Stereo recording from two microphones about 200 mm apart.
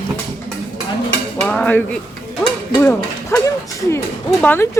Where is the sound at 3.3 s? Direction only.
15° left (ahead or behind).